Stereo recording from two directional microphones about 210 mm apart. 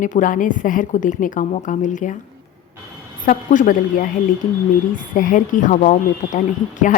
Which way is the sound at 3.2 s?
40° left (ahead or behind).